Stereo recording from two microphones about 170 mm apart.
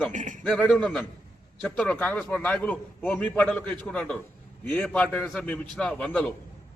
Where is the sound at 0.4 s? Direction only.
Centre (ahead or behind).